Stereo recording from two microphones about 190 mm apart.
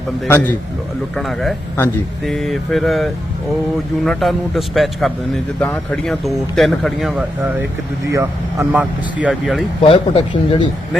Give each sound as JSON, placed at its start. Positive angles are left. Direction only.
{"t": 0.3, "sound": "a man's voice", "side_deg": 10}
{"t": 8.1, "sound": "speech", "side_deg": -15}
{"t": 9.8, "sound": "speech", "side_deg": 30}